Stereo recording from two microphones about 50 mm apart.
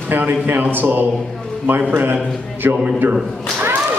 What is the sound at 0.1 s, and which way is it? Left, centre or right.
Speech, right.